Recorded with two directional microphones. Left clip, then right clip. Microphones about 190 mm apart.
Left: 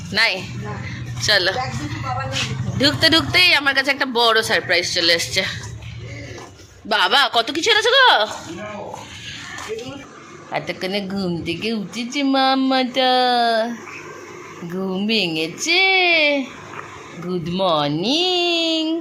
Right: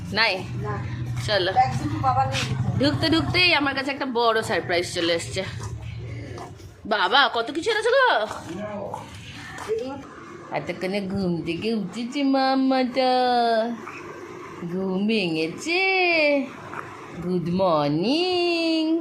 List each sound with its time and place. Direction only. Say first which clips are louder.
0.1 s a woman's voice: left 4 dB; centre (ahead or behind)
2.7 s a woman's voice: left 7 dB; 5° left (ahead or behind)
4.8 s speech: left 6 dB; 15° right (ahead or behind)
5.0 s a woman's voice: left 7 dB; centre (ahead or behind)
6.8 s a woman's voice: left 3 dB; 5° right (ahead or behind)
10.5 s a woman's voice: left 4 dB; centre (ahead or behind)
14.8 s a woman's voice: left 4 dB; centre (ahead or behind)